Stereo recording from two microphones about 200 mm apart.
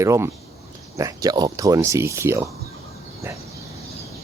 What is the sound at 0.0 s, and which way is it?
Speech, 15° right (ahead or behind).